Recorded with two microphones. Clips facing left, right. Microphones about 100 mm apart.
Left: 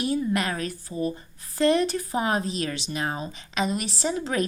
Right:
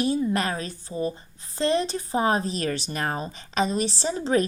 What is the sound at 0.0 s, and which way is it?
A woman's voice, 30° right (ahead or behind).